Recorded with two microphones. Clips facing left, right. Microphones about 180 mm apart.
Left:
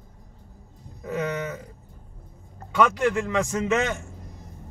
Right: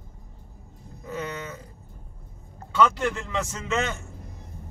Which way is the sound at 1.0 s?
20° left (ahead or behind).